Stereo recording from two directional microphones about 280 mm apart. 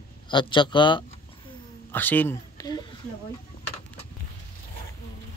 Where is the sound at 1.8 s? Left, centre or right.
Centre.